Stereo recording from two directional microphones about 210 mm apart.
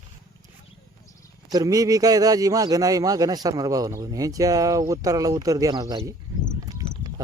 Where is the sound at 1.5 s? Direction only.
15° right (ahead or behind).